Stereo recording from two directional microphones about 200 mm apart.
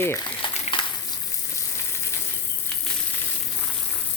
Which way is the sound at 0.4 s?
25° left (ahead or behind).